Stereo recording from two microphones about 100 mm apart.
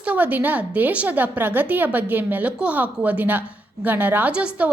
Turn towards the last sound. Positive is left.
turn(degrees=-10)  # may be behind; listen again after turning